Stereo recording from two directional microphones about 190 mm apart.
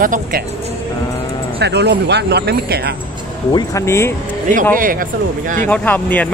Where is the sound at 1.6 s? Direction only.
65° right (ahead or behind).